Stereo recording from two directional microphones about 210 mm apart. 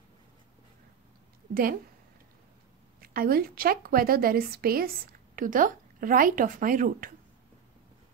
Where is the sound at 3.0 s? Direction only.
45° right (ahead or behind).